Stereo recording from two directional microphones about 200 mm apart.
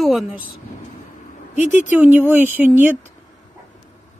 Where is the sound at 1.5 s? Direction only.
40° left (ahead or behind).